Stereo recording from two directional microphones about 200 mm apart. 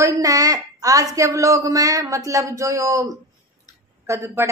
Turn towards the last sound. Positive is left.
turn(degrees=-15)  # may be behind; listen again after turning